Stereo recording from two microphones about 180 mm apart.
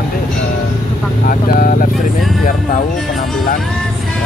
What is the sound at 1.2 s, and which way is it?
Speech, 50° left (ahead or behind).